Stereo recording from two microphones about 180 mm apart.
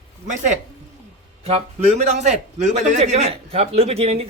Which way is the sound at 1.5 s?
35° right (ahead or behind).